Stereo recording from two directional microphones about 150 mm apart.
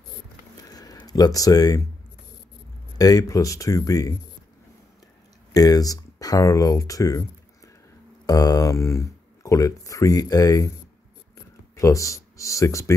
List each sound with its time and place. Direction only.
0.7 s a sound: 25° left (ahead or behind)
3.0 s speech: 25° left (ahead or behind)
5.5 s speech: 25° left (ahead or behind)
11.8 s speech: 20° left (ahead or behind)